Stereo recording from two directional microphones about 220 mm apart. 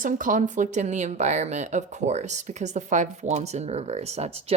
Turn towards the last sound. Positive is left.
turn(degrees=-30)  # may be behind; listen again after turning